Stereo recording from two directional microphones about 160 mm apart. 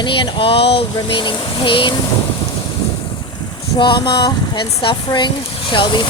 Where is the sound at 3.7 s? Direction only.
30° left (ahead or behind).